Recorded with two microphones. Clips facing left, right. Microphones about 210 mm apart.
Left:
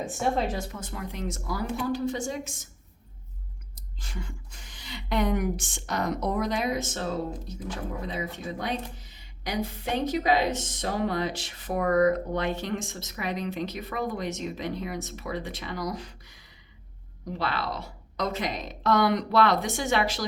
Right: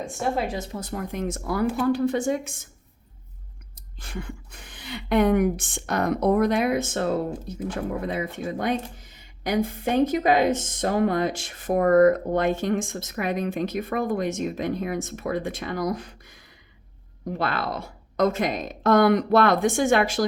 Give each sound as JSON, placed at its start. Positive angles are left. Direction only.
{"t": 0.0, "sound": "speech", "side_deg": 0}
{"t": 0.4, "sound": "speech", "side_deg": -15}
{"t": 0.7, "sound": "speech", "side_deg": -35}
{"t": 4.0, "sound": "speech", "side_deg": -60}